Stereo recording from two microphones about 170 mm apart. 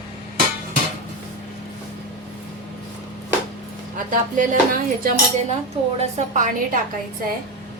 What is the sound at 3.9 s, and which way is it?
Speech, 50° right (ahead or behind).